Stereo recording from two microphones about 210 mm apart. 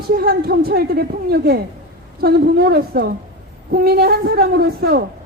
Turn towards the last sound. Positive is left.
turn(degrees=-45)  # may be behind; listen again after turning